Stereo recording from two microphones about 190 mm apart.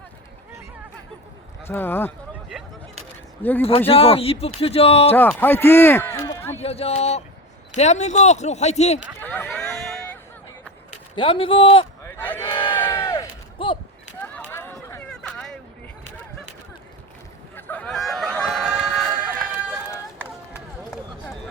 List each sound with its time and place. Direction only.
1.6 s speech: 10° left (ahead or behind)
3.6 s speech: 30° left (ahead or behind)
5.1 s a man's voice: 10° left (ahead or behind)
6.6 s speech: 30° left (ahead or behind)
9.2 s run: 10° left (ahead or behind)
11.1 s speech: 25° left (ahead or behind)
12.0 s a sound: 10° left (ahead or behind)
12.4 s crowd: 25° left (ahead or behind)
12.7 s a sound: 15° left (ahead or behind)
14.6 s a sound: 15° left (ahead or behind)
17.5 s fowl: 10° left (ahead or behind); by 20.3 s 5° right (ahead or behind)